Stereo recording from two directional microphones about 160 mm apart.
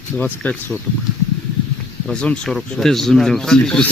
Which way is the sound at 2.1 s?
5° left (ahead or behind).